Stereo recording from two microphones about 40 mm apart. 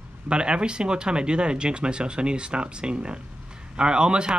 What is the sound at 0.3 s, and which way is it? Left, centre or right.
Speech, right.